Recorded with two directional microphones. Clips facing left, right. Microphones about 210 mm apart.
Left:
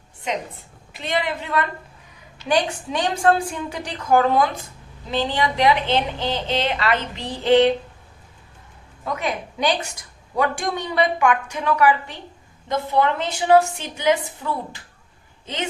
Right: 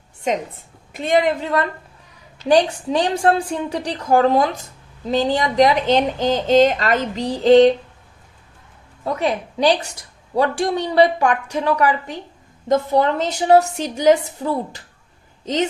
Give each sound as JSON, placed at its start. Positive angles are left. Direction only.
{"t": 0.3, "sound": "a woman's voice", "side_deg": -45}
{"t": 9.1, "sound": "a woman's voice", "side_deg": -35}